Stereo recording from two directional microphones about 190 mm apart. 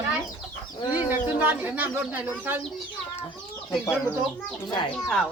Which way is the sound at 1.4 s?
10° right (ahead or behind).